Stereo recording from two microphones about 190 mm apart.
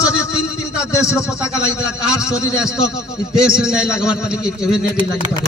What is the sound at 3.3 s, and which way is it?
A man's voice, 5° right (ahead or behind).